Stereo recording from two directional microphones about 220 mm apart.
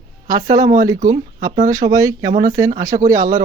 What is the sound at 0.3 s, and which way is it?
Speech, 15° right (ahead or behind).